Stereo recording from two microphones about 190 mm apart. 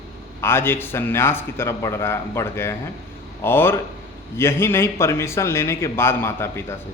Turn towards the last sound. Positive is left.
turn(degrees=15)  # may be behind; listen again after turning